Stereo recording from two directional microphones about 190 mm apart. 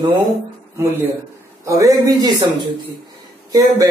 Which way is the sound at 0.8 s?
10° right (ahead or behind).